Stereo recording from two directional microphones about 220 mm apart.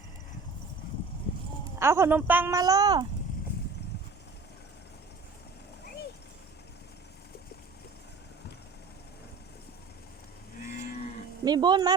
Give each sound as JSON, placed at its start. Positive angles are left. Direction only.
{"t": 1.8, "sound": "speech", "side_deg": -10}
{"t": 11.4, "sound": "speech", "side_deg": -20}